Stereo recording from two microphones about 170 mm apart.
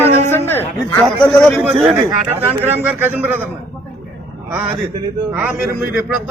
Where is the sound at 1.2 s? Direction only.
5° left (ahead or behind).